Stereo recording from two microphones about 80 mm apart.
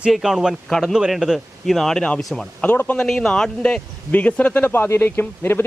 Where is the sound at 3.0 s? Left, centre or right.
Centre.